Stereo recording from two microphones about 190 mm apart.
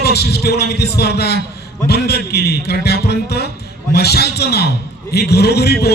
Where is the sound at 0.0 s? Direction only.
55° left (ahead or behind).